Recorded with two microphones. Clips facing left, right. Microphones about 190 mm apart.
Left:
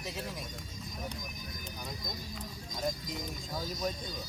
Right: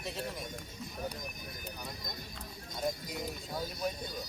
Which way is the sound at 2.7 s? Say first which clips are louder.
Even; 5° right (ahead or behind).